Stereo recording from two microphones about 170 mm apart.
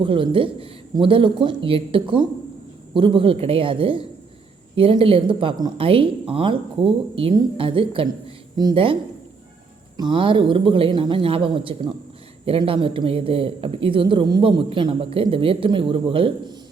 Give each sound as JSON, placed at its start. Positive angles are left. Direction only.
{"t": 0.0, "sound": "speech", "side_deg": -30}
{"t": 10.0, "sound": "speech", "side_deg": -30}